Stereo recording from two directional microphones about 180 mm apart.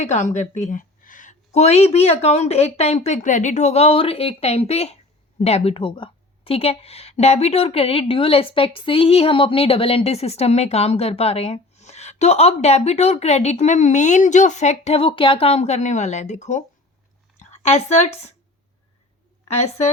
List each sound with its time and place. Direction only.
0.0 s a woman's voice: 40° left (ahead or behind)
19.5 s a woman's voice: 35° left (ahead or behind)